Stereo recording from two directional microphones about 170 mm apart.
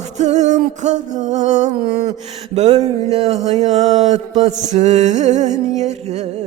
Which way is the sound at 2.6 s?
40° right (ahead or behind).